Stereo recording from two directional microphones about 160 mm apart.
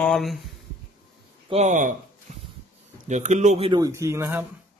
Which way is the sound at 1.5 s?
50° right (ahead or behind).